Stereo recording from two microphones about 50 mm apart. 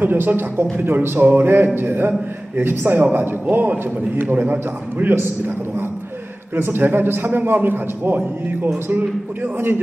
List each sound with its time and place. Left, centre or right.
0.0 s a man's voice: right
6.5 s a man's voice: right